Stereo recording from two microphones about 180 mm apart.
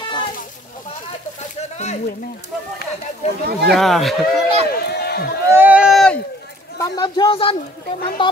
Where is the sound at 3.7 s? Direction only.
Centre (ahead or behind).